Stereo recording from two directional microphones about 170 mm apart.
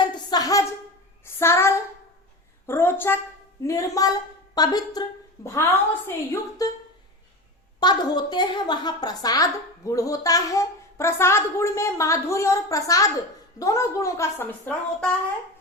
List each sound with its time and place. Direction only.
0.3 s a sound: 20° left (ahead or behind)
1.2 s child singing: 15° left (ahead or behind)
2.6 s a sound: 15° left (ahead or behind)
3.6 s a woman's voice: 20° left (ahead or behind)
6.1 s a woman's voice: 15° left (ahead or behind)
7.8 s a woman's voice: 25° left (ahead or behind)